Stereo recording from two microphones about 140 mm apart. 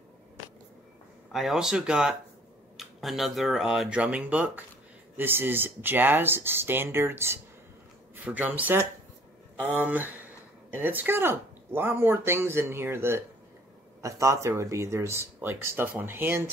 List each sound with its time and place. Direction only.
1.3 s speech: centre (ahead or behind)